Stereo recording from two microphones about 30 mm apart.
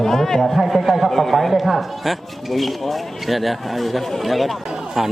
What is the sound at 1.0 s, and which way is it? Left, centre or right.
Speech, centre.